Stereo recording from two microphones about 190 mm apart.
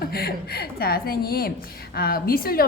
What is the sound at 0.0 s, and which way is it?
A woman's voice, 55° left (ahead or behind).